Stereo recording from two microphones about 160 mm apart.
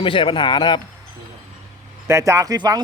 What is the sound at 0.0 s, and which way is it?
Speech, 35° left (ahead or behind).